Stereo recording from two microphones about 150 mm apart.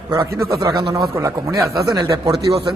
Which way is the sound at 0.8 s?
90° right.